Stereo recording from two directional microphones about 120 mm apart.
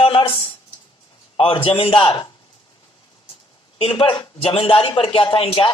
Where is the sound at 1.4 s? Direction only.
50° left (ahead or behind).